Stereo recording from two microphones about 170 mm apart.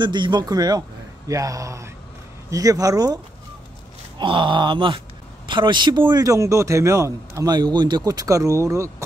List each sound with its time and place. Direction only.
0.0 s speech: 25° right (ahead or behind)
4.2 s speech: 30° right (ahead or behind)